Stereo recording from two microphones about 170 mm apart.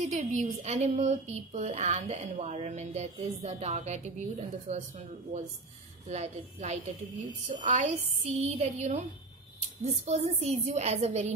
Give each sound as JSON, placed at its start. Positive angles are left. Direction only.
{"t": 0.0, "sound": "a woman's voice", "side_deg": -45}